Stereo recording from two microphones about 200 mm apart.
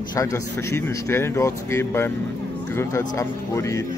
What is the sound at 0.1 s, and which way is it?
Speech, 15° left (ahead or behind).